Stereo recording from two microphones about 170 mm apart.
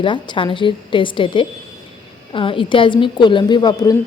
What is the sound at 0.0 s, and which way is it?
A woman's voice, 30° left (ahead or behind).